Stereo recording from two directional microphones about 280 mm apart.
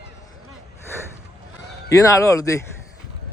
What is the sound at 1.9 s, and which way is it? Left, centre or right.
Speech, centre.